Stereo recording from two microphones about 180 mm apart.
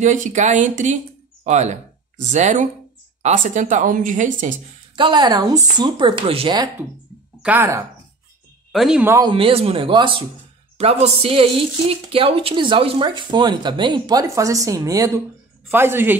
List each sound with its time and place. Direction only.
0.0 s speech: 40° right (ahead or behind)
4.9 s a woman's voice: 25° right (ahead or behind)
7.4 s speech: 10° right (ahead or behind)
9.2 s a woman's voice: 30° right (ahead or behind); by 16.2 s 10° right (ahead or behind)